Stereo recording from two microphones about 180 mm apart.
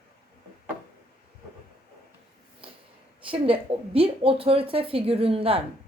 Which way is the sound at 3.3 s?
30° right (ahead or behind).